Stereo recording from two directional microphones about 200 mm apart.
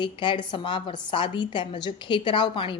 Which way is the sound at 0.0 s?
25° left (ahead or behind).